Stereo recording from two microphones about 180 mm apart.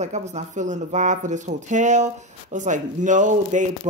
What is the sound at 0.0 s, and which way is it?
Speech, 40° right (ahead or behind).